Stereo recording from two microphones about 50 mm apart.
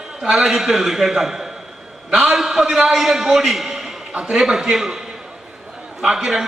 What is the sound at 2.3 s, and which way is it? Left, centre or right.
A man's voice, centre.